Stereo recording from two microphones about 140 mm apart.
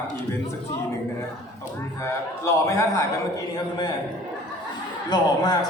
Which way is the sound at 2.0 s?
20° left (ahead or behind).